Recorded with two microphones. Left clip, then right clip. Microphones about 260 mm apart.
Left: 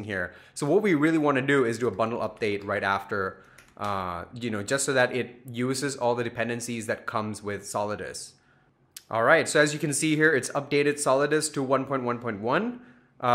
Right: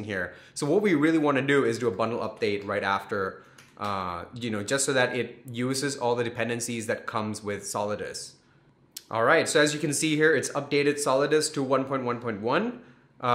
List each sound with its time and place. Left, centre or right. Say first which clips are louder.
0.0 s speech: even; left